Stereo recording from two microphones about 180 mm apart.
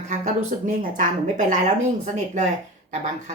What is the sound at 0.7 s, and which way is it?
Speech, 50° right (ahead or behind).